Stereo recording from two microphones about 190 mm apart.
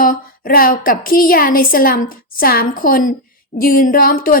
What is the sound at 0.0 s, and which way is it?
A woman's voice, 50° left (ahead or behind).